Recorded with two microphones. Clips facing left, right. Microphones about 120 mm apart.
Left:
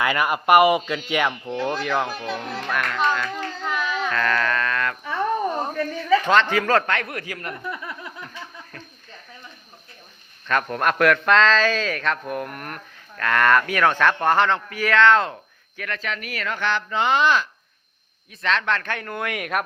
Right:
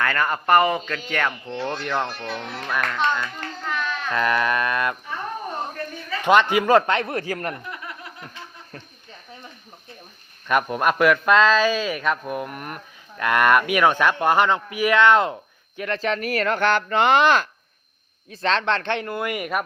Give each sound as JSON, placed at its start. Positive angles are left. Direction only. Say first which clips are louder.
{"t": 0.0, "sound": "speech", "louder": "left 1 dB", "side_deg": 10}
{"t": 3.7, "sound": "baby cry", "louder": "left 2 dB", "side_deg": 5}
{"t": 4.1, "sound": "speech", "louder": "right 4 dB", "side_deg": -15}
{"t": 6.2, "sound": "speech", "louder": "right 2 dB", "side_deg": -15}
{"t": 7.1, "sound": "speech", "louder": "right 5 dB", "side_deg": -35}
{"t": 10.5, "sound": "speech", "louder": "right 2 dB", "side_deg": -10}
{"t": 15.8, "sound": "speech", "louder": "right 6 dB", "side_deg": -30}
{"t": 18.3, "sound": "speech", "louder": "right 2 dB", "side_deg": -35}
{"t": 19.0, "sound": "speech", "louder": "right 2 dB", "side_deg": -5}